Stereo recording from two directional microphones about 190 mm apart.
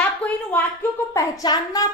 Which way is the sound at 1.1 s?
20° left (ahead or behind).